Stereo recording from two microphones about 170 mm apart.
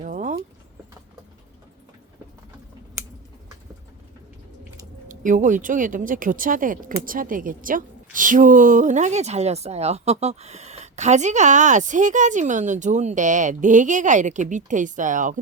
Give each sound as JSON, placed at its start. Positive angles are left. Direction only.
{"t": 0.0, "sound": "vehicle", "side_deg": -50}
{"t": 5.0, "sound": "speech", "side_deg": -50}